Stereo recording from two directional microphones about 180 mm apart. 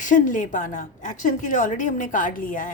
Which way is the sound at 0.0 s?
45° left (ahead or behind).